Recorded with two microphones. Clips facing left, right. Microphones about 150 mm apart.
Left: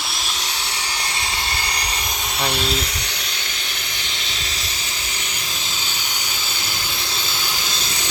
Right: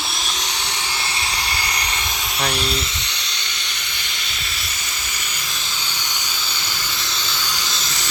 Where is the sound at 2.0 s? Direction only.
50° left (ahead or behind).